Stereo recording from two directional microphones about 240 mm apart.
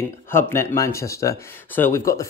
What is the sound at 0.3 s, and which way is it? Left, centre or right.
Speech, centre.